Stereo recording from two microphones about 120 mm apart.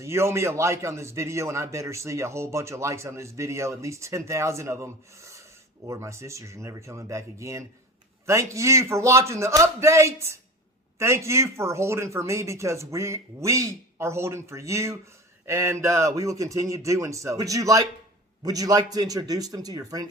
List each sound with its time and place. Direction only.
0.0 s a man's voice: 25° right (ahead or behind)